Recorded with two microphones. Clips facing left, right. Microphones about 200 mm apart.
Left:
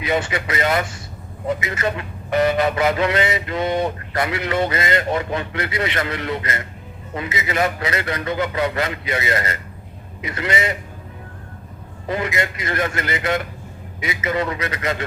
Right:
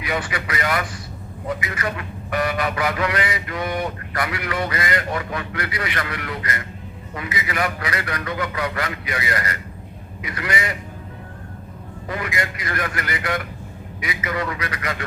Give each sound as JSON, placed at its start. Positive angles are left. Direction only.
{"t": 0.0, "sound": "a man's voice", "side_deg": 25}
{"t": 12.0, "sound": "a man's voice", "side_deg": 25}